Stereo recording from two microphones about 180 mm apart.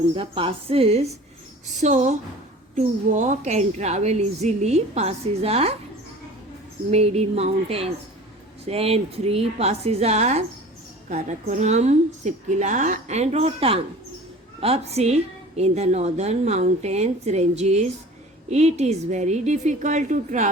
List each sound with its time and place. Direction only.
0.2 s a woman's voice: 30° right (ahead or behind)
6.9 s a woman's voice: 35° right (ahead or behind)